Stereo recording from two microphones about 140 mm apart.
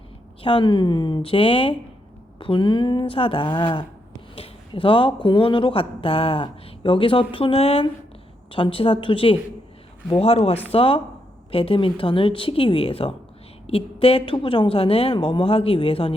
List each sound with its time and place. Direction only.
0.4 s a woman's voice: 35° left (ahead or behind)